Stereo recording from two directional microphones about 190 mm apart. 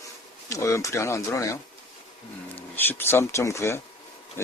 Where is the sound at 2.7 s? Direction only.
10° left (ahead or behind).